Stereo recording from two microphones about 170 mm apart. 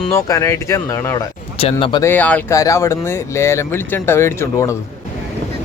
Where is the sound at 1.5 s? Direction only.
35° left (ahead or behind).